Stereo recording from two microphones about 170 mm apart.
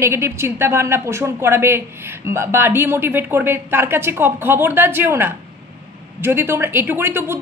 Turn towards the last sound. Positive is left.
turn(degrees=-15)  # may be behind; listen again after turning